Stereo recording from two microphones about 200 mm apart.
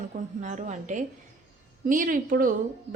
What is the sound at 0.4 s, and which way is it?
A woman's voice, 35° right (ahead or behind).